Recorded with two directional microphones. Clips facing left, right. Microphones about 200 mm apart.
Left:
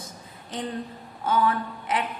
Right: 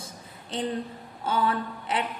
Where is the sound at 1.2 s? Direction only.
30° right (ahead or behind).